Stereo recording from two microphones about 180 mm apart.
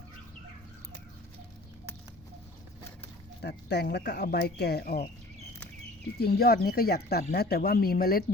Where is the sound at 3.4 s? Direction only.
65° left (ahead or behind).